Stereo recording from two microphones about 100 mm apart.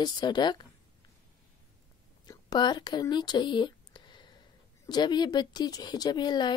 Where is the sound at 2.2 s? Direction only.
45° left (ahead or behind).